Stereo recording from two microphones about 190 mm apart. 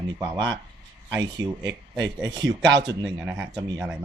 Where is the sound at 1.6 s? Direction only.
70° right (ahead or behind).